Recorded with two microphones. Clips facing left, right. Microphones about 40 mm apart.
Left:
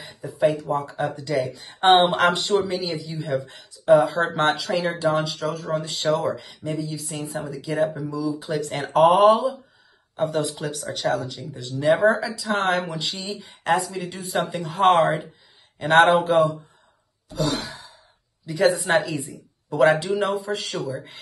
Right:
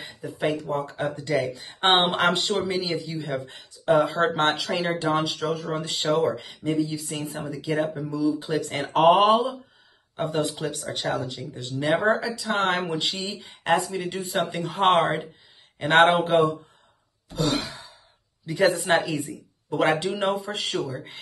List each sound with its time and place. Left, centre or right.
0.2 s speech: right
0.8 s speech: right
6.0 s speech: right
7.4 s speech: centre
8.0 s speech: right
8.5 s speech: centre
8.9 s speech: right
12.0 s speech: centre
12.3 s speech: right
13.2 s speech: centre
13.7 s speech: right
17.6 s sigh: right
18.4 s speech: right
19.7 s speech: right